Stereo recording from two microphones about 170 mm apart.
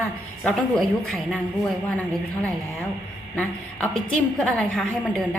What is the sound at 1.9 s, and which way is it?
A woman's voice, 10° left (ahead or behind).